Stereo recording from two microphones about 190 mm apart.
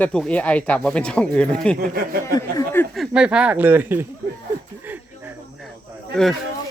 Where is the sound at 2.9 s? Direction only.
5° right (ahead or behind).